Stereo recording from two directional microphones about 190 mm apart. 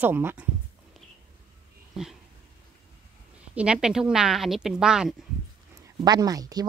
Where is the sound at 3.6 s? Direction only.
5° right (ahead or behind).